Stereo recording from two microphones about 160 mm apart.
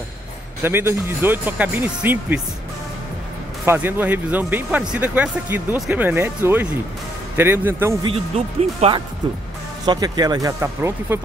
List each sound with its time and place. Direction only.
0.6 s speech: 15° right (ahead or behind)
3.6 s speech: 10° right (ahead or behind)
8.0 s speech: 35° right (ahead or behind)
9.8 s speech: 25° right (ahead or behind)